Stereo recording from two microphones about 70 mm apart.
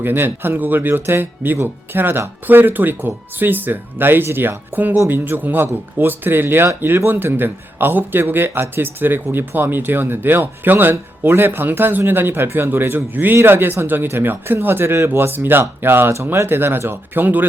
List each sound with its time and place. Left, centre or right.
0.0 s speech: right